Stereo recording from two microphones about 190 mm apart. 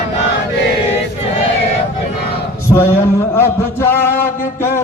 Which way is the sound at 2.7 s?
15° left (ahead or behind).